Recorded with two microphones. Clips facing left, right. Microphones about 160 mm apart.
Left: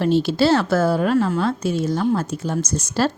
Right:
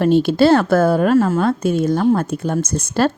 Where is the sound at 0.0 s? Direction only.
55° right (ahead or behind).